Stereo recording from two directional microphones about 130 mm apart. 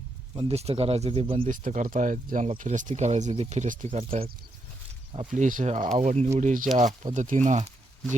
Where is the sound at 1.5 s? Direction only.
85° right.